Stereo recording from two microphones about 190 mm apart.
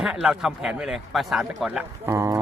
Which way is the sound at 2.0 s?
15° right (ahead or behind).